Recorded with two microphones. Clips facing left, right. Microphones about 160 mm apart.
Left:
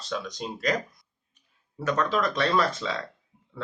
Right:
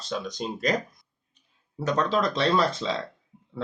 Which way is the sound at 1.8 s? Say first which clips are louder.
Right 1 dB; 30° right (ahead or behind).